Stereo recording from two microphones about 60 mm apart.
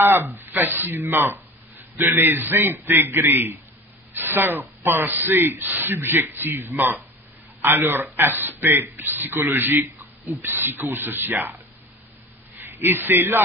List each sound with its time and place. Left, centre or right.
0.0 s speech: right
12.5 s a man's voice: right